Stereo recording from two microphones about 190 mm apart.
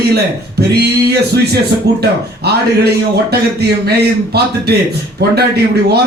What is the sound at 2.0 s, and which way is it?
Speech, 60° right (ahead or behind).